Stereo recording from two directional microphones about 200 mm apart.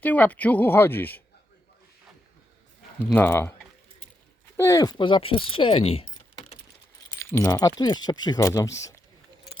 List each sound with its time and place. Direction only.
0.0 s speech: 10° left (ahead or behind)
3.0 s speech: 10° left (ahead or behind)
4.5 s speech: 15° left (ahead or behind)
7.2 s speech: 15° left (ahead or behind)